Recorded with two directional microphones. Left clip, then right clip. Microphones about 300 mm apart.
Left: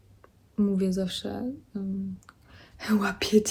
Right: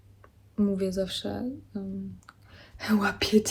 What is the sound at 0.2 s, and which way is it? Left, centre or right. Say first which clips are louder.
A woman's voice: even; centre.